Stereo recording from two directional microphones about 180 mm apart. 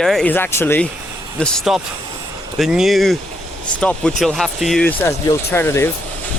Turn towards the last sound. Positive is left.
turn(degrees=10)  # may be behind; listen again after turning